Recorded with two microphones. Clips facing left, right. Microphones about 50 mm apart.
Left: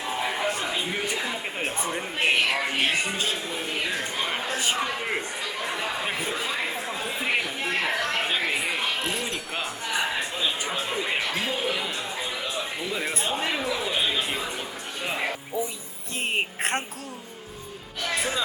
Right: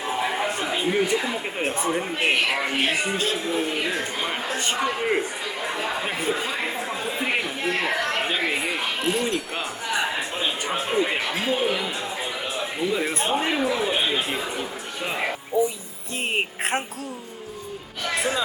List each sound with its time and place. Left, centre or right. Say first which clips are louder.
0.0 s speech: right 2 dB; centre
15.5 s music: right 9 dB; centre
16.2 s a woman's voice: right 1 dB; centre
18.0 s music: right 3 dB; centre